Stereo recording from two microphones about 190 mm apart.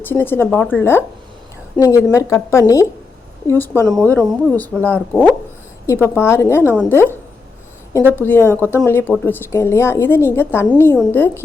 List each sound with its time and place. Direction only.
0.0 s a woman's voice: 10° left (ahead or behind)
8.1 s a woman's voice: 10° left (ahead or behind)